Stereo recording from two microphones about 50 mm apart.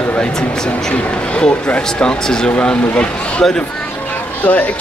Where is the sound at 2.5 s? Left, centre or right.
Left.